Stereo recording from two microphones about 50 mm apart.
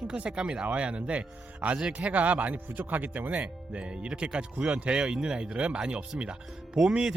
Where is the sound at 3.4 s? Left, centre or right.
Right.